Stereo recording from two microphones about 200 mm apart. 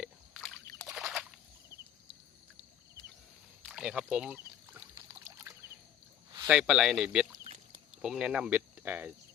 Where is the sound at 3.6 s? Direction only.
5° right (ahead or behind).